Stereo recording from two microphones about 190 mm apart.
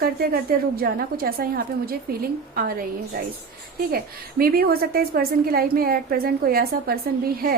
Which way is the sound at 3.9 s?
50° right (ahead or behind).